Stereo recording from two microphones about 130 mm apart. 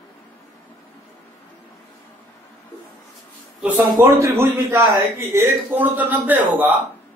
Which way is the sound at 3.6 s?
15° right (ahead or behind).